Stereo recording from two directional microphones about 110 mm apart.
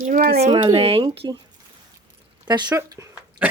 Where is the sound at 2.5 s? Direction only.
40° right (ahead or behind).